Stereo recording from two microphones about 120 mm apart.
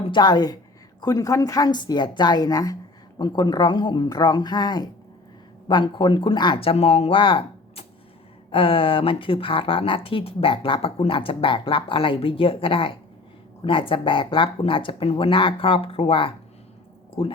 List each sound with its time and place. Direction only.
0.0 s a woman's voice: 40° left (ahead or behind)